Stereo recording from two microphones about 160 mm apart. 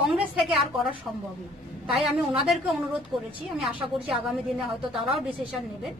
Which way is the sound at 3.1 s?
5° right (ahead or behind).